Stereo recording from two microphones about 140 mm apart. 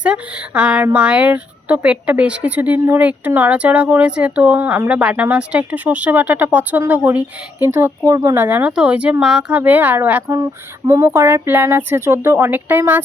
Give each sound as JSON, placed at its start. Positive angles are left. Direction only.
{"t": 0.0, "sound": "speech", "side_deg": -10}